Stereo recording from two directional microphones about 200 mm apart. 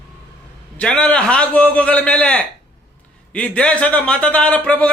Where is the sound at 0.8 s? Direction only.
5° left (ahead or behind).